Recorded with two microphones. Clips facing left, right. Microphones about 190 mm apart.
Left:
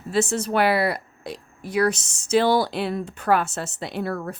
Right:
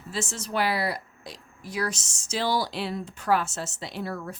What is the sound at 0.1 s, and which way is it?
Speech, 60° left (ahead or behind).